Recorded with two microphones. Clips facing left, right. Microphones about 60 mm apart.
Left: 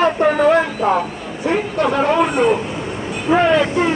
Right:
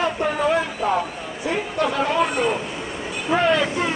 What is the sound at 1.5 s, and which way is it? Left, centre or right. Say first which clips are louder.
A man's voice: left 5 dB; left.